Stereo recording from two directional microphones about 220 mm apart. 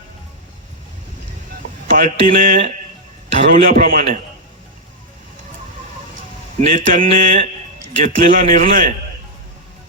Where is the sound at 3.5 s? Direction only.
40° right (ahead or behind).